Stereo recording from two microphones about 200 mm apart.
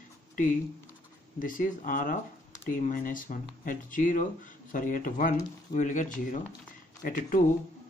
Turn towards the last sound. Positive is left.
turn(degrees=45)  # may be behind; listen again after turning